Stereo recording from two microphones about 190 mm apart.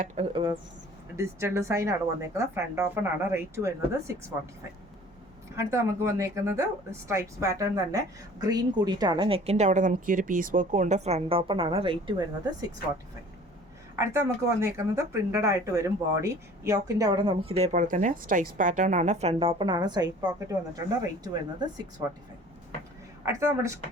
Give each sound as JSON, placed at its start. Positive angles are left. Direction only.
{"t": 0.3, "sound": "speech", "side_deg": -25}
{"t": 1.1, "sound": "speech", "side_deg": -15}
{"t": 5.5, "sound": "speech", "side_deg": -15}
{"t": 14.0, "sound": "speech", "side_deg": -15}
{"t": 23.2, "sound": "speech", "side_deg": -15}